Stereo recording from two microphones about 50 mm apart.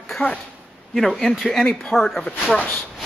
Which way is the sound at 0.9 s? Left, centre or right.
Centre.